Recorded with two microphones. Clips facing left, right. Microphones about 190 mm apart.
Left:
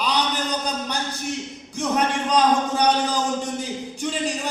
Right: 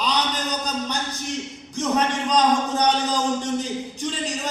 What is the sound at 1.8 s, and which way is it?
A man's voice, 10° left (ahead or behind).